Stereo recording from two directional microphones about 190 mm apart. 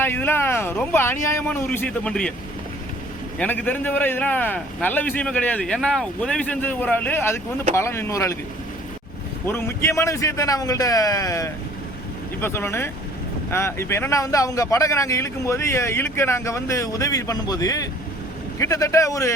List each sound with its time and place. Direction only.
0.0 s speech: 10° left (ahead or behind)
3.3 s speech: 10° left (ahead or behind)
9.5 s speech: 15° left (ahead or behind)